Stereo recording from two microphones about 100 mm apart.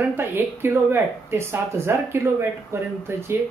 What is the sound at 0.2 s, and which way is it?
Speech, 25° right (ahead or behind).